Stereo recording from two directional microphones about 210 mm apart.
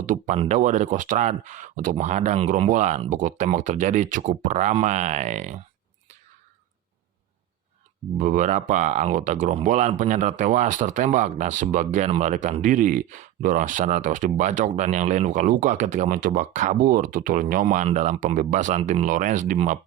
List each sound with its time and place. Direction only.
0.0 s speech: 40° right (ahead or behind)
8.2 s speech: 35° right (ahead or behind)